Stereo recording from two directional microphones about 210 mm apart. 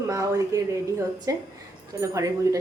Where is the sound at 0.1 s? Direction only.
15° right (ahead or behind).